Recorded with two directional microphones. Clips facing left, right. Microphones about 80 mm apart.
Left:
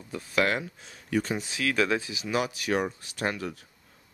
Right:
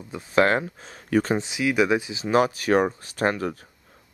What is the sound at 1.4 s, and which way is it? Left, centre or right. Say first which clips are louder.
Speech: right 5 dB; centre.